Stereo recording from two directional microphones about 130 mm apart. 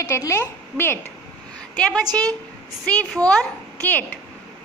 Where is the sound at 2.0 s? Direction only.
30° right (ahead or behind).